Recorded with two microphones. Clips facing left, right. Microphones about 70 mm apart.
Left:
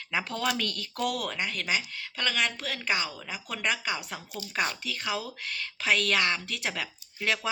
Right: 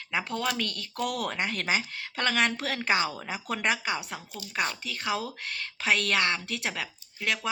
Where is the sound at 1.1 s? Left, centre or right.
Right.